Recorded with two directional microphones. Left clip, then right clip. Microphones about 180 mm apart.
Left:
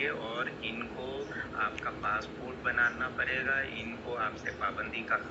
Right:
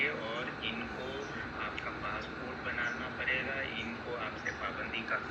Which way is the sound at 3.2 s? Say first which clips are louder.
Left 3 dB; 5° left (ahead or behind).